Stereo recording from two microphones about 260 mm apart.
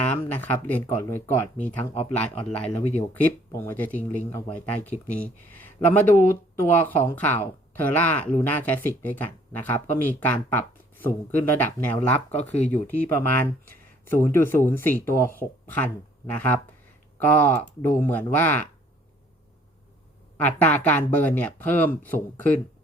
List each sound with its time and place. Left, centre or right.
0.3 s speech: centre
12.4 s speech: left
12.7 s speech: centre
17.2 s speech: centre
20.4 s speech: centre